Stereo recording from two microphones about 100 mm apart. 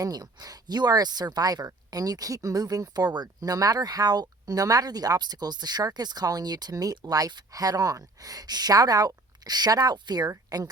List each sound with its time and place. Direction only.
0.0 s speech: 40° right (ahead or behind)